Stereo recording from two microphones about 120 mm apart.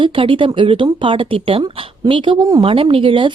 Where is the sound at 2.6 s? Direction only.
50° right (ahead or behind).